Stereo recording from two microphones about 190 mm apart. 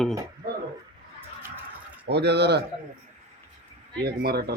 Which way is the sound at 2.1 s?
60° right (ahead or behind).